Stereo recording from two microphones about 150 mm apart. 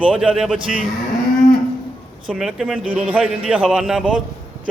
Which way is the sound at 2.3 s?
5° right (ahead or behind).